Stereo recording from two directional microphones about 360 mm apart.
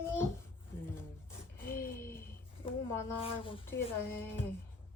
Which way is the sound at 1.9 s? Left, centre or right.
Centre.